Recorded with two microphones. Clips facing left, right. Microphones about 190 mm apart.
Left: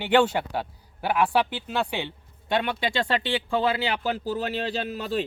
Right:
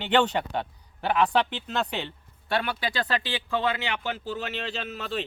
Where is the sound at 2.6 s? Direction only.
25° left (ahead or behind).